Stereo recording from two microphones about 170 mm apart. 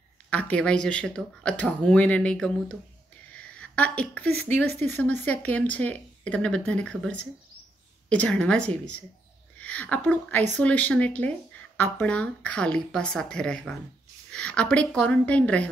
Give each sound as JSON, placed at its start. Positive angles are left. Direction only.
{"t": 0.3, "sound": "a woman's voice", "side_deg": 5}